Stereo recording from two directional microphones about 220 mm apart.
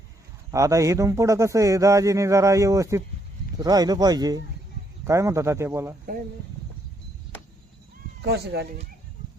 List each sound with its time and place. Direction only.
0.5 s a man's voice: 15° right (ahead or behind)
8.2 s speech: 45° right (ahead or behind)